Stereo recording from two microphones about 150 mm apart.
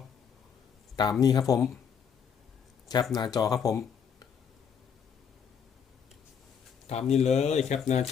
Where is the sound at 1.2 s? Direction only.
25° left (ahead or behind).